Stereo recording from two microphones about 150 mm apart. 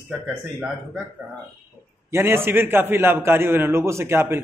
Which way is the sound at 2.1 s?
15° right (ahead or behind).